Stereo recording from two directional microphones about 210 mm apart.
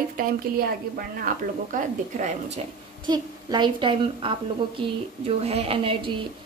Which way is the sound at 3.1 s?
20° right (ahead or behind).